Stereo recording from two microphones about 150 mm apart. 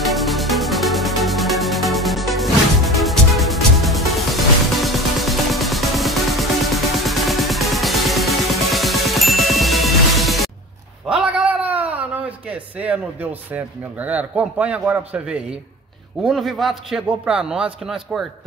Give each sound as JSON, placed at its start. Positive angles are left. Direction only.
{"t": 0.0, "sound": "music", "side_deg": 0}
{"t": 11.1, "sound": "a sound", "side_deg": -5}
{"t": 16.3, "sound": "speech", "side_deg": 0}